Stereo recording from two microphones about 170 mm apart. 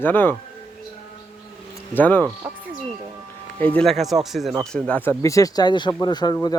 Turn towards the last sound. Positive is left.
turn(degrees=25)  # may be behind; listen again after turning